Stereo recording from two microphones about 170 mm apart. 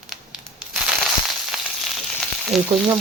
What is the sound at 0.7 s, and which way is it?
Crushing, centre (ahead or behind).